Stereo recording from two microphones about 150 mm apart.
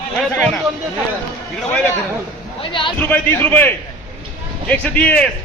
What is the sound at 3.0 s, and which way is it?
A man's voice, 15° left (ahead or behind).